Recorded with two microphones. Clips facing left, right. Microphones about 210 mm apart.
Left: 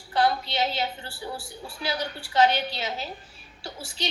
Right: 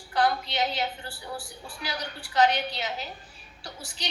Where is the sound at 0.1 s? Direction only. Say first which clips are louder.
Left 2 dB; 25° left (ahead or behind).